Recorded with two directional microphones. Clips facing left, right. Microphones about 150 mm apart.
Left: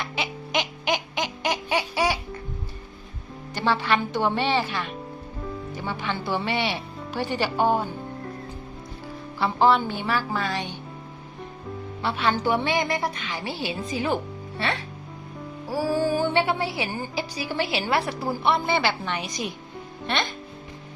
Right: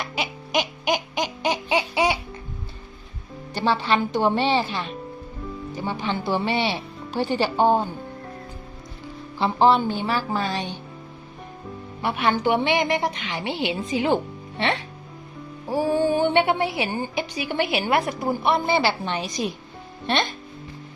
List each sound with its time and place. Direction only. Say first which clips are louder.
0.0 s a sound: right 1 dB; 15° right (ahead or behind)
3.5 s a woman's voice: right 2 dB; 15° right (ahead or behind)
9.4 s a woman's voice: right 2 dB; 15° right (ahead or behind)
12.0 s a woman's voice: right 2 dB; 15° right (ahead or behind)